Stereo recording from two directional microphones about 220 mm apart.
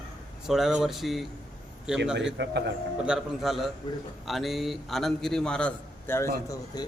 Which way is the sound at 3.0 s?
Centre (ahead or behind).